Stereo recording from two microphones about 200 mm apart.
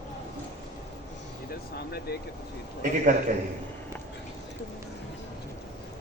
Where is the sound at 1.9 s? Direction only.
50° left (ahead or behind).